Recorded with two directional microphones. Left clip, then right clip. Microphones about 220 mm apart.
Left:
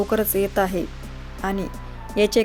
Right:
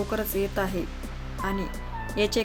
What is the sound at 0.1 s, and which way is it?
Speech, 35° left (ahead or behind).